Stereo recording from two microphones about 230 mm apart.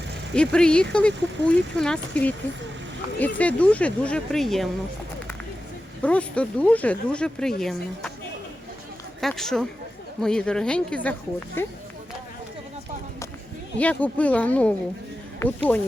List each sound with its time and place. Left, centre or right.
0.3 s speech: centre
6.0 s speech: centre
9.2 s speech: centre
13.7 s speech: centre